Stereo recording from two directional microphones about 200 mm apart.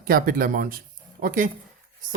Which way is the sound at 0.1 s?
45° right (ahead or behind).